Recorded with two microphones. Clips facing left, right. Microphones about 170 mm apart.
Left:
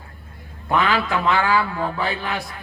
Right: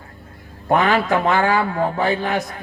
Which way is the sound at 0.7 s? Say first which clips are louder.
Right 4 dB; 45° right (ahead or behind).